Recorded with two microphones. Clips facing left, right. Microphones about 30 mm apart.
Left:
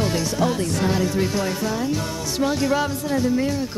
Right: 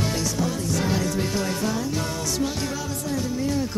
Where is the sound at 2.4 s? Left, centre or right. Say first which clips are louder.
Left 11 dB; left.